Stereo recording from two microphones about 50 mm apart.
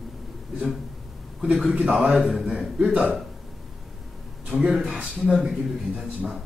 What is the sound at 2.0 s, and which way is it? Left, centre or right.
Speech, centre.